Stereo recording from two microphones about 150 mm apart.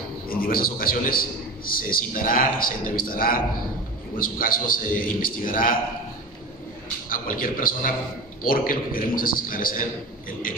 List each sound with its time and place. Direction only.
0.3 s a man's voice: 75° left (ahead or behind)
7.1 s a man's voice: 65° left (ahead or behind)